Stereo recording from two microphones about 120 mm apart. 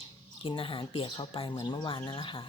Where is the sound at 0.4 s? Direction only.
50° left (ahead or behind).